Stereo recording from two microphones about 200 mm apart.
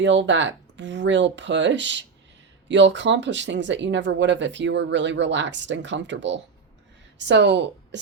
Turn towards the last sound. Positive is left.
turn(degrees=-60)  # may be behind; listen again after turning